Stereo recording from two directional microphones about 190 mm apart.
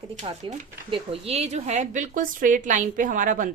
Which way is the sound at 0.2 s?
30° right (ahead or behind).